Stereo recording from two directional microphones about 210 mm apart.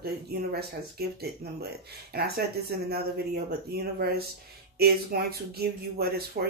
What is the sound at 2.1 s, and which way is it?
Speech, 50° right (ahead or behind).